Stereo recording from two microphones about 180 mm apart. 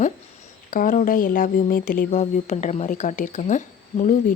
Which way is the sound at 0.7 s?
50° left (ahead or behind).